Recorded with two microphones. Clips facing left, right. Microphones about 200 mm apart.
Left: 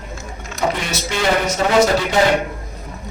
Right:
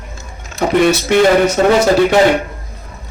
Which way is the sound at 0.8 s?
60° right (ahead or behind).